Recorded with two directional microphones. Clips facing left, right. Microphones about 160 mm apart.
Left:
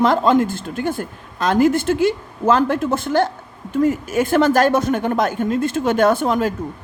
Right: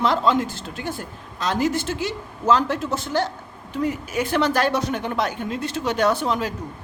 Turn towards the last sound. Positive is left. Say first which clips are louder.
# left 5 dB
turn(degrees=50)  # may be behind; listen again after turning